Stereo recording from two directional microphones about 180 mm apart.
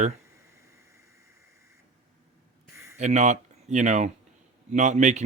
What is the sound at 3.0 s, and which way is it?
Speech, 40° right (ahead or behind).